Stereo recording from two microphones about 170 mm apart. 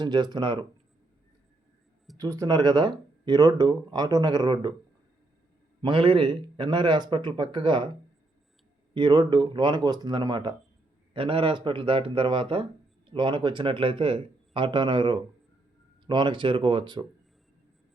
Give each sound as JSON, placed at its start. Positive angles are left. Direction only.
{"t": 0.0, "sound": "speech", "side_deg": -25}
{"t": 2.1, "sound": "speech", "side_deg": -20}
{"t": 5.8, "sound": "speech", "side_deg": -30}
{"t": 9.0, "sound": "speech", "side_deg": -25}